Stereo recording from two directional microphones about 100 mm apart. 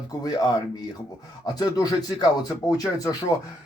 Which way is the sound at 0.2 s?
40° left (ahead or behind).